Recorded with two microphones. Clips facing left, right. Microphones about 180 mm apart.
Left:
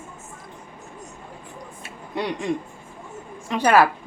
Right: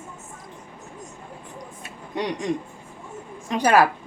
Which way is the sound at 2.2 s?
15° right (ahead or behind).